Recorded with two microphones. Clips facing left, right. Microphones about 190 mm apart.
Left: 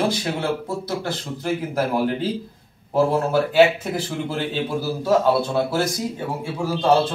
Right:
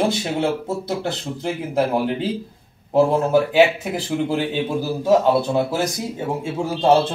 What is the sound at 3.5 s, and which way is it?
A man's voice, 15° right (ahead or behind).